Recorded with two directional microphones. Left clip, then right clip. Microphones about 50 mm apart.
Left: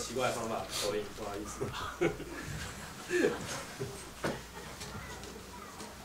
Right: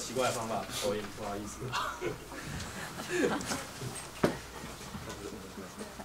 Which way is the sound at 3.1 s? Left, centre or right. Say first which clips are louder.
Left 1 dB; centre.